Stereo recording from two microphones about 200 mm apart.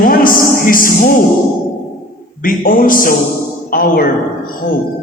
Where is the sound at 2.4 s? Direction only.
45° left (ahead or behind).